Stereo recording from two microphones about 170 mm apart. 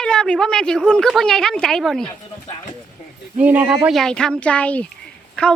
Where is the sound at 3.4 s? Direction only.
10° right (ahead or behind).